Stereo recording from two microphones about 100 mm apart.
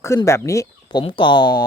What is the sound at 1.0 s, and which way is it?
Speech, 55° left (ahead or behind).